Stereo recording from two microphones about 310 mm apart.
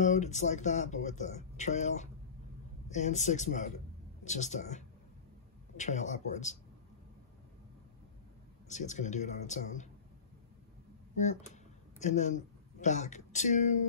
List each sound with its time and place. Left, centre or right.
0.0 s a man's voice: left
8.6 s speech: left
12.0 s speech: left